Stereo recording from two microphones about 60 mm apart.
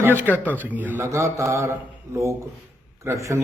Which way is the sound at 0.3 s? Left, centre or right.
Left.